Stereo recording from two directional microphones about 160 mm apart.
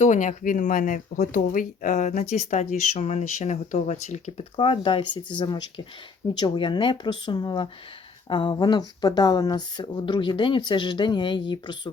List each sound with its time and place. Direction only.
0.0 s speech: 50° left (ahead or behind)
4.5 s speech: 35° left (ahead or behind)